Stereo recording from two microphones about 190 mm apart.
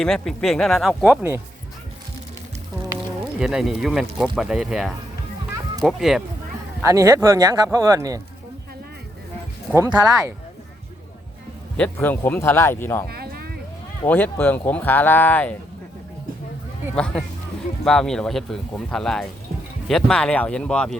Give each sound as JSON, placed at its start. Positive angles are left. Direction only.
{"t": 0.0, "sound": "speech", "side_deg": 5}
{"t": 1.1, "sound": "speech", "side_deg": -15}
{"t": 2.9, "sound": "speech", "side_deg": -5}
{"t": 6.8, "sound": "speech", "side_deg": -15}
{"t": 9.7, "sound": "speech", "side_deg": -15}
{"t": 11.8, "sound": "speech", "side_deg": 10}
{"t": 13.1, "sound": "a sound", "side_deg": -55}
{"t": 14.1, "sound": "speech", "side_deg": 10}
{"t": 16.9, "sound": "speech", "side_deg": 5}